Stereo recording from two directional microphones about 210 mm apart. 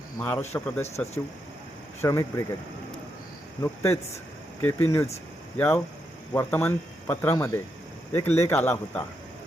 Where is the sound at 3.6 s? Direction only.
10° left (ahead or behind).